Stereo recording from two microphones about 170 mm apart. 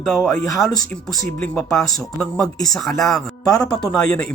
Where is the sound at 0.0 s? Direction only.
Centre (ahead or behind).